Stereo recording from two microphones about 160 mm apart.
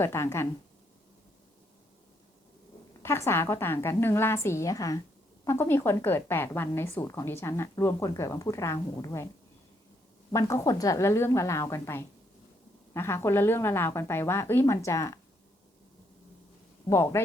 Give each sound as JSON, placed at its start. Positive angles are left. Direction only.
{"t": 0.0, "sound": "a woman's voice", "side_deg": 15}
{"t": 3.0, "sound": "a woman's voice", "side_deg": 15}
{"t": 10.3, "sound": "a woman's voice", "side_deg": 20}
{"t": 16.9, "sound": "a woman's voice", "side_deg": 15}